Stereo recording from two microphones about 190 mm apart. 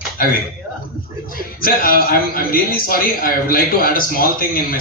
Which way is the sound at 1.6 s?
50° left (ahead or behind).